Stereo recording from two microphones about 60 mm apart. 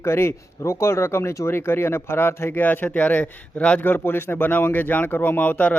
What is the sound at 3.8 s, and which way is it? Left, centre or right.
Speech, left.